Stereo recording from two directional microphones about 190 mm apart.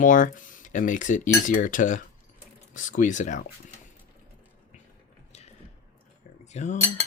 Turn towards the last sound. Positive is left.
turn(degrees=35)  # may be behind; listen again after turning